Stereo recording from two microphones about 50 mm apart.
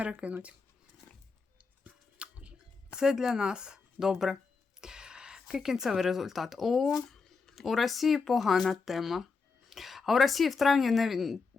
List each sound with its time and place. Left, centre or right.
0.0 s speech: right
1.8 s a sound: right
3.0 s a woman's voice: centre